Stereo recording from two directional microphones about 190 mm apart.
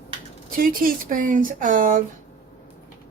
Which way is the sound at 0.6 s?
50° right (ahead or behind).